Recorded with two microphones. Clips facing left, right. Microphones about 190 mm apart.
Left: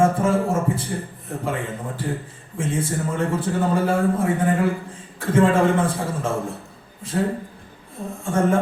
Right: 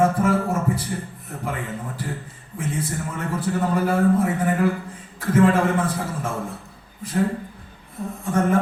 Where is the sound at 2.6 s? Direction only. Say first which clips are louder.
Left 3 dB; 25° left (ahead or behind).